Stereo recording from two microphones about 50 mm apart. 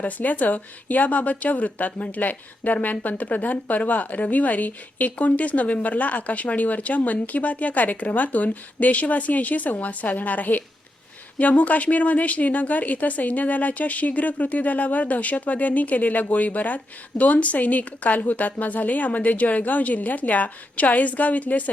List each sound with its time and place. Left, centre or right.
0.0 s speech: left